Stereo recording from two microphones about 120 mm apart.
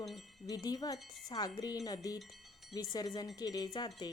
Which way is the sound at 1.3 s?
35° left (ahead or behind).